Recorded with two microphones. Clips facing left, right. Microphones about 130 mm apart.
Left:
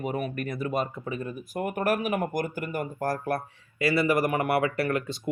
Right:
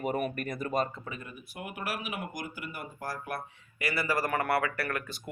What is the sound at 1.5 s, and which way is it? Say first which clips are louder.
Speech: left 10 dB; 45° left (ahead or behind).